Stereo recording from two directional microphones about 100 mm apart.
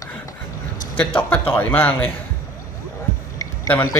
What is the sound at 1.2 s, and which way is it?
Speech, 15° left (ahead or behind).